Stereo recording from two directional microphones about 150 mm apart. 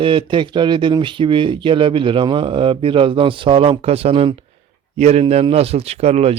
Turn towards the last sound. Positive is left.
turn(degrees=-45)  # may be behind; listen again after turning